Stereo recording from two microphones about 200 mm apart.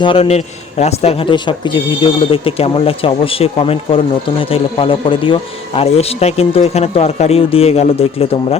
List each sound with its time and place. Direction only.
0.0 s speech: 30° left (ahead or behind)